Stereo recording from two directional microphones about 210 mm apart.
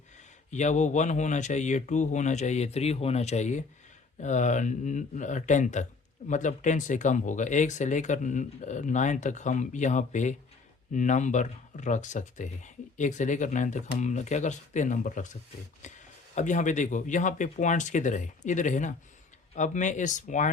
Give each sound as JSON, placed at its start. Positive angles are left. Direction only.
{"t": 0.5, "sound": "speech", "side_deg": 35}